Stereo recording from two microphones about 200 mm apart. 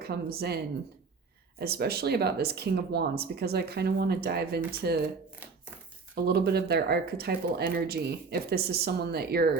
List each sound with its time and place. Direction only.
0.0 s speech: 50° right (ahead or behind)
6.2 s speech: 50° right (ahead or behind)